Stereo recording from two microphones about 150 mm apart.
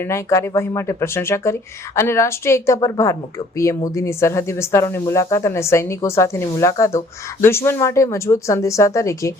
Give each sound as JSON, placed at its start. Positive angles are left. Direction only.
{"t": 0.0, "sound": "speech", "side_deg": 20}